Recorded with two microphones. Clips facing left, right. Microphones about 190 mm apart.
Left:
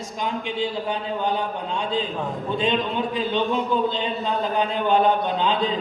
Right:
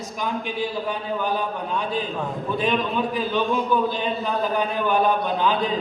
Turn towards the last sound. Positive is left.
turn(degrees=20)  # may be behind; listen again after turning